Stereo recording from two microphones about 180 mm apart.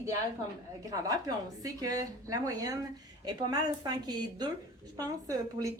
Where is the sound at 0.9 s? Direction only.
20° right (ahead or behind).